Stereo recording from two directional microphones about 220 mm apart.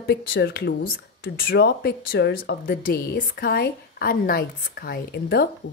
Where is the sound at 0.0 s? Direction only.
45° left (ahead or behind).